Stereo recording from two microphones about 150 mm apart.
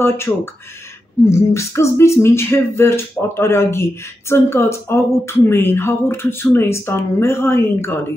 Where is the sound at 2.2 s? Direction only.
15° left (ahead or behind).